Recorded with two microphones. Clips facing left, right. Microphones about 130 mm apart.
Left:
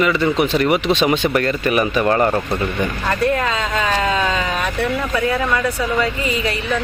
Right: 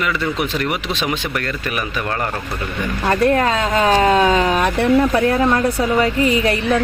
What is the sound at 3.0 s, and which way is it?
Speech, 45° right (ahead or behind).